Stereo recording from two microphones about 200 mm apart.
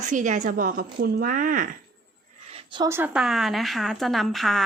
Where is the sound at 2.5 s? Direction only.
25° right (ahead or behind).